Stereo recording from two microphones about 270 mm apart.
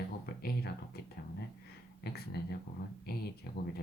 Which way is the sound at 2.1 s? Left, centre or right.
Left.